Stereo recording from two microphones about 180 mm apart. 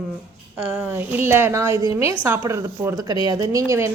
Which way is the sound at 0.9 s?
10° right (ahead or behind).